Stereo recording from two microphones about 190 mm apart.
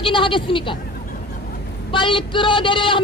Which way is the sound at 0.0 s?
25° left (ahead or behind).